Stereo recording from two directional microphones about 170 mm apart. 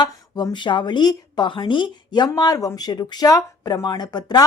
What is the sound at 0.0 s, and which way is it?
A woman's voice, 25° left (ahead or behind).